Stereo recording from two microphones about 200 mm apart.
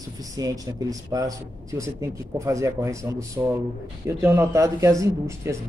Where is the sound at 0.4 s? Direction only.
15° right (ahead or behind).